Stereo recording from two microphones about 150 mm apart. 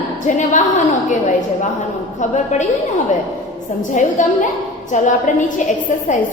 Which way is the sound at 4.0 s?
55° left (ahead or behind).